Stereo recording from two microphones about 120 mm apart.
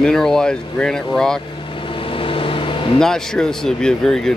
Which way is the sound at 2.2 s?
45° left (ahead or behind).